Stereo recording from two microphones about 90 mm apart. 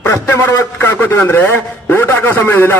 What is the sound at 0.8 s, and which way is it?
A man's voice, 20° left (ahead or behind).